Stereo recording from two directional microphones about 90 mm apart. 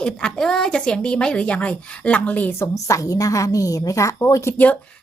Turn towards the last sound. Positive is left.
turn(degrees=30)  # may be behind; listen again after turning